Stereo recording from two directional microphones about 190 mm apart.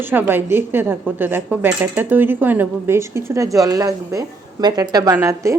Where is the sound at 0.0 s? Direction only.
10° right (ahead or behind).